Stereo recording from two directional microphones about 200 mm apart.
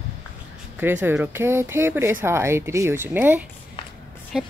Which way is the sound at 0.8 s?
10° right (ahead or behind).